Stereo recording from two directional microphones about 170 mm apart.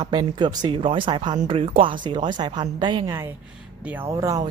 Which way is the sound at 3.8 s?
10° right (ahead or behind).